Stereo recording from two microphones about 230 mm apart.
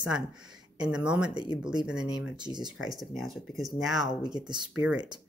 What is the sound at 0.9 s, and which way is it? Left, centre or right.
Speech, centre.